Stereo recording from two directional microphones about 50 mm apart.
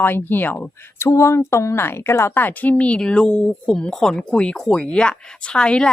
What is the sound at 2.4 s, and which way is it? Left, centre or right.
Speech, left.